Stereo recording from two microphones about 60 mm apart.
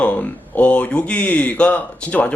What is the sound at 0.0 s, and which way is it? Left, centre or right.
Speech, left.